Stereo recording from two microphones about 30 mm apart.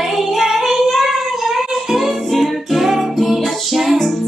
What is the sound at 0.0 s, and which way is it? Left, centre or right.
Child singing, centre.